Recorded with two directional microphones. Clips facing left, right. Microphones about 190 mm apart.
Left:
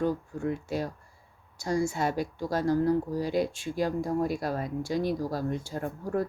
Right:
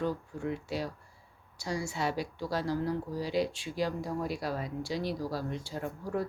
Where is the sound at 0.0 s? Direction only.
45° left (ahead or behind).